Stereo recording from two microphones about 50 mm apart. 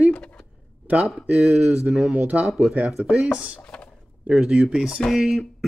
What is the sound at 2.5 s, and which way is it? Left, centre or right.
Speech, centre.